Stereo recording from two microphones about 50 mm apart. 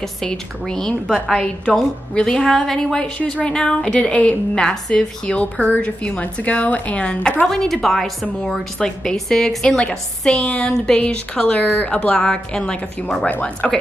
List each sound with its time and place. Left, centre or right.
0.2 s a woman's voice: centre
4.6 s a woman's voice: centre
7.4 s a woman's voice: centre
10.3 s a woman's voice: left
11.7 s a woman's voice: left; by 13.8 s centre